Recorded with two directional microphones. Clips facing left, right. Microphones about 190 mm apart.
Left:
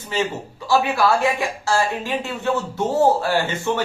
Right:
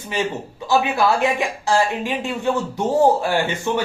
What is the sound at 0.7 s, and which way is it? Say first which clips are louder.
A woman's voice: even; 20° right (ahead or behind).